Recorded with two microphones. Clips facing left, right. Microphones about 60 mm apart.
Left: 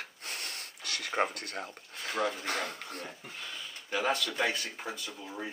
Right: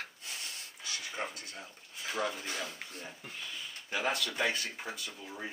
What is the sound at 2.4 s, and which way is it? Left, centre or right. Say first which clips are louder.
Speech: left 5 dB; left.